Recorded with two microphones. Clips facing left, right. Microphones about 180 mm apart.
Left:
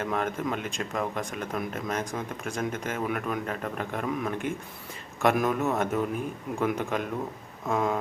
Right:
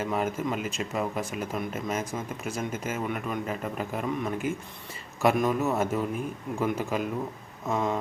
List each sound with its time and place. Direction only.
0.0 s speech: 5° right (ahead or behind)